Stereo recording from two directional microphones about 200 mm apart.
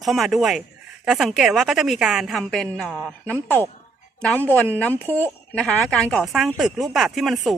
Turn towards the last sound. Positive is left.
turn(degrees=0)  # may be behind; listen again after turning